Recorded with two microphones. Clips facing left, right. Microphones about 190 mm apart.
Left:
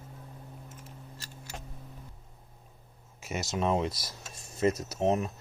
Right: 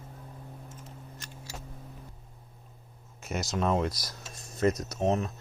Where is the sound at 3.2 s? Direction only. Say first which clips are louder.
Right 1 dB; 5° left (ahead or behind).